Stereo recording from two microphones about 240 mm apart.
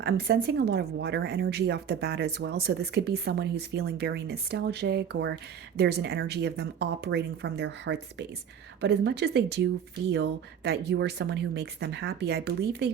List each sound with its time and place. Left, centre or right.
0.0 s speech: right